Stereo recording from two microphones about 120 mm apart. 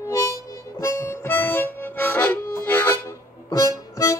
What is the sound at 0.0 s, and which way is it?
Harmonica, 25° left (ahead or behind).